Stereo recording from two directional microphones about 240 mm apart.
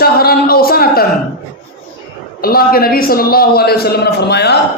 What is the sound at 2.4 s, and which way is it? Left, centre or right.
A man's voice, left.